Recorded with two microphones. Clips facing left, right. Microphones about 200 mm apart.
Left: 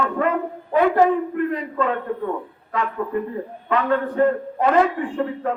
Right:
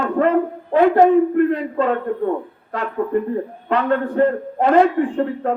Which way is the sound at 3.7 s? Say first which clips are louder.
Right 2 dB; 35° right (ahead or behind).